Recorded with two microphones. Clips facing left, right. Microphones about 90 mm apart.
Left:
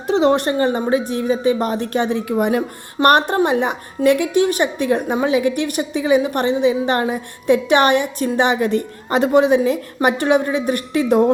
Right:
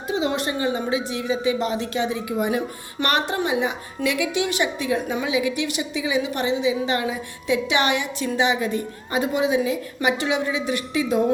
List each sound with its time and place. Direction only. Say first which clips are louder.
0.1 s a woman's voice: left 8 dB; 60° left (ahead or behind)